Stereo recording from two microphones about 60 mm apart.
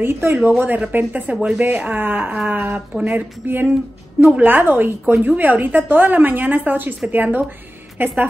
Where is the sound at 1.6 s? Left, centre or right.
Right.